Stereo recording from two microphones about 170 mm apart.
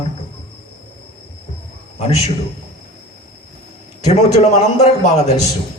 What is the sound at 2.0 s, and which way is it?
Speech, 40° left (ahead or behind).